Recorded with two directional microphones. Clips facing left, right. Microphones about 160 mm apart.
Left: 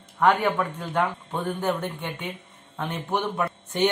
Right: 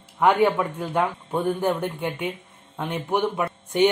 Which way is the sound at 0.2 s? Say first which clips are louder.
Right 2 dB; 10° right (ahead or behind).